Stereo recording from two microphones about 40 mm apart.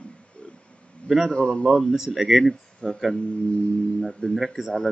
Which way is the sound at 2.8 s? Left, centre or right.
Left.